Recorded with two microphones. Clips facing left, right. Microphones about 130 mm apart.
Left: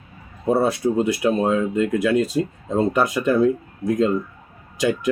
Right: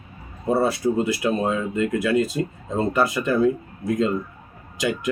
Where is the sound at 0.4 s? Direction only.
20° left (ahead or behind).